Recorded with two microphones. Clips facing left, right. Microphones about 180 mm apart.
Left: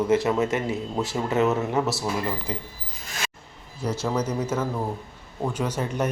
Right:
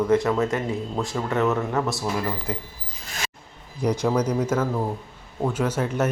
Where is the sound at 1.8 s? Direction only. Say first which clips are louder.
Left 1 dB; 20° left (ahead or behind).